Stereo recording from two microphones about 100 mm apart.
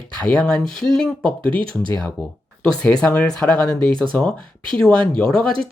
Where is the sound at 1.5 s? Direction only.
55° right (ahead or behind).